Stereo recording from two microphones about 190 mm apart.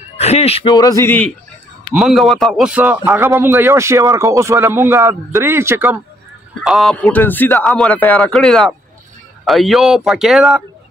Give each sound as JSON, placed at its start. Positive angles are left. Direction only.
{"t": 0.2, "sound": "speech", "side_deg": 35}
{"t": 1.0, "sound": "a man's voice", "side_deg": 10}
{"t": 6.6, "sound": "speech", "side_deg": 0}